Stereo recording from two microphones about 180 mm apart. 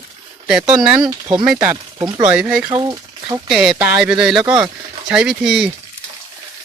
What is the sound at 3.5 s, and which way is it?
Speech, centre (ahead or behind).